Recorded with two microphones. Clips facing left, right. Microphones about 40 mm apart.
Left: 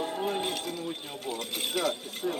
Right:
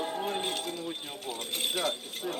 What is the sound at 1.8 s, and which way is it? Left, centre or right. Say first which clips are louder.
Speech: left 2 dB; right.